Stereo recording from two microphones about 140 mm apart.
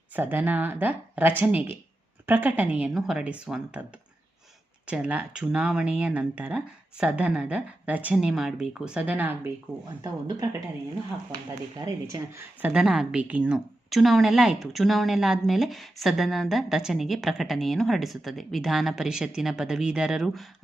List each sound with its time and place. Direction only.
0.2 s speech: 15° right (ahead or behind)
4.9 s speech: 10° right (ahead or behind)
11.8 s speech: 25° right (ahead or behind)
12.6 s a woman's voice: 5° right (ahead or behind)